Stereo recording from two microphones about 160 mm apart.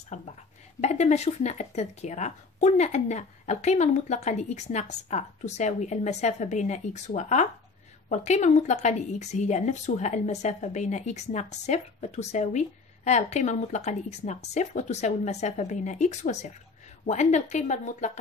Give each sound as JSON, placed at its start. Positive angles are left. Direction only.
{"t": 0.1, "sound": "a woman's voice", "side_deg": 50}